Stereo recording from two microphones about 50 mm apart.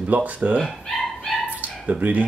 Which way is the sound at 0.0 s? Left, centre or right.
Right.